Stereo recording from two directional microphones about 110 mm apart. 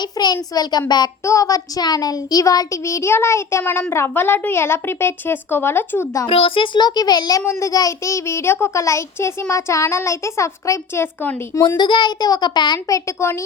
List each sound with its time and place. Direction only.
0.0 s a child's voice: 40° left (ahead or behind); by 6.1 s 20° left (ahead or behind)
6.2 s a child's voice: 55° left (ahead or behind)
6.7 s a child's voice: 40° left (ahead or behind)
7.4 s a child's voice: 25° left (ahead or behind)
11.8 s a child's voice: 45° left (ahead or behind)
13.1 s a child's voice: 25° left (ahead or behind)